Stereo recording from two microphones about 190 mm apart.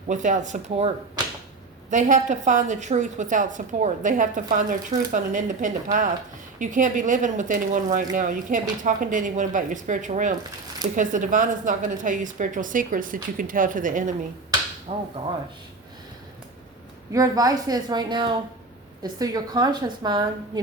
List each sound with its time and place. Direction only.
0.1 s a woman's voice: 40° right (ahead or behind)
1.9 s a woman's voice: 40° right (ahead or behind)
17.1 s a woman's voice: 15° right (ahead or behind)